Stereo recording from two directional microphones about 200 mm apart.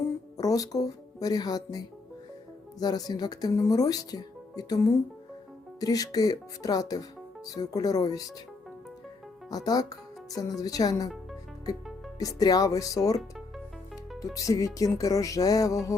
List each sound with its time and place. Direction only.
0.3 s speech: 20° left (ahead or behind)
9.5 s speech: 20° left (ahead or behind)
12.2 s music: 20° left (ahead or behind)
14.3 s music: 15° left (ahead or behind)